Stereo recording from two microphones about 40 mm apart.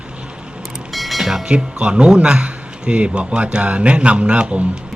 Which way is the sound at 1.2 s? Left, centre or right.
Centre.